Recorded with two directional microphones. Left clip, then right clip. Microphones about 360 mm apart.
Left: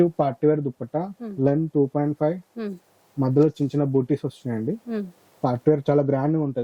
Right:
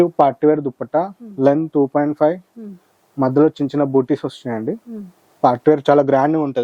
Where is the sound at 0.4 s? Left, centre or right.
Centre.